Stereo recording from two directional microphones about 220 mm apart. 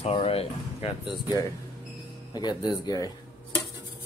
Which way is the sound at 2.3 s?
20° left (ahead or behind).